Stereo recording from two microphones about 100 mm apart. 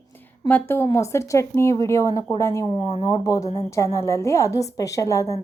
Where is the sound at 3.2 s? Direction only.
30° left (ahead or behind).